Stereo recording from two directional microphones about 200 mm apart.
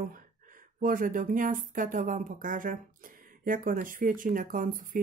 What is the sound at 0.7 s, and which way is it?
Speech, 45° right (ahead or behind).